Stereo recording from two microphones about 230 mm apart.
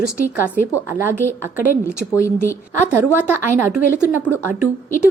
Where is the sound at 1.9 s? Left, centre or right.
Centre.